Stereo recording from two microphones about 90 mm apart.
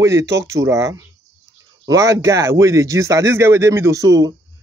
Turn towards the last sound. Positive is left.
turn(degrees=-40)  # may be behind; listen again after turning